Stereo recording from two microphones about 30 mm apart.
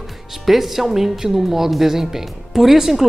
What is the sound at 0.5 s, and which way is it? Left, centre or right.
A woman's voice, centre.